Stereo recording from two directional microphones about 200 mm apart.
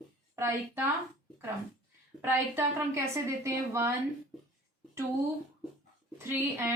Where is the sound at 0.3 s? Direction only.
10° right (ahead or behind).